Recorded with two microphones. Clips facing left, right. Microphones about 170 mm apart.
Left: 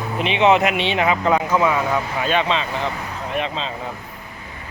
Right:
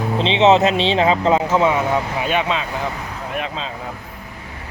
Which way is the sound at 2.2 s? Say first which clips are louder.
Even; 10° right (ahead or behind).